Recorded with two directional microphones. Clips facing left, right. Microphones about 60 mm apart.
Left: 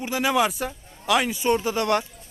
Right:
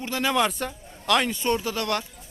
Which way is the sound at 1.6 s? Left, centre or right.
Left.